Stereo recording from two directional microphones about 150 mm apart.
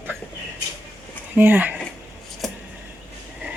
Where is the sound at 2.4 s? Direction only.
Centre (ahead or behind).